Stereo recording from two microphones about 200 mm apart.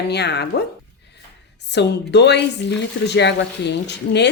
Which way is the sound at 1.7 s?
60° left (ahead or behind).